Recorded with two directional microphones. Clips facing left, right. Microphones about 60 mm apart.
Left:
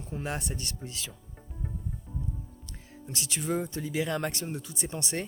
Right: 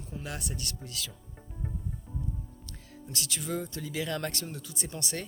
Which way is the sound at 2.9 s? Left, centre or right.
Left.